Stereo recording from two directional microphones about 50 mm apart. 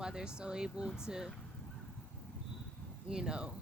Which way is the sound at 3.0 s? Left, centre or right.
Centre.